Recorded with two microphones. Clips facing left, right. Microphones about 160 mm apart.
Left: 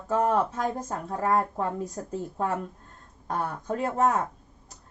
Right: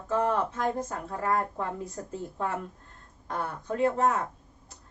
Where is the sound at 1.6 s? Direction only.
40° left (ahead or behind).